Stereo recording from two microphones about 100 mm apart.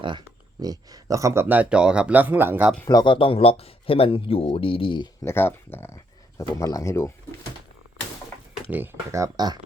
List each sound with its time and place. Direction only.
0.0 s speech: 50° right (ahead or behind); by 2.6 s 20° right (ahead or behind)
2.9 s speech: 50° left (ahead or behind)
5.2 s speech: 25° left (ahead or behind)
8.7 s speech: 20° right (ahead or behind)